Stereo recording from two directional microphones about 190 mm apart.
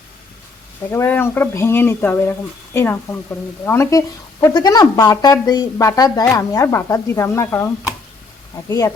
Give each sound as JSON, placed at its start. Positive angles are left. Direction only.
{"t": 0.9, "sound": "speech", "side_deg": 10}